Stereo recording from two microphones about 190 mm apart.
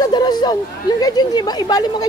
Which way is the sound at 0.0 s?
20° left (ahead or behind).